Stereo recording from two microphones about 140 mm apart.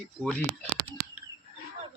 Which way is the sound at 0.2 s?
Centre (ahead or behind).